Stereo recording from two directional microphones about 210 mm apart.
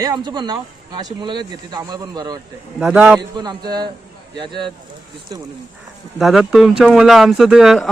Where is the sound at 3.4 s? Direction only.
20° right (ahead or behind).